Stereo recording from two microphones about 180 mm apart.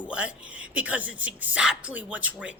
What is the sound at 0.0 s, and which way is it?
Speech, 5° right (ahead or behind).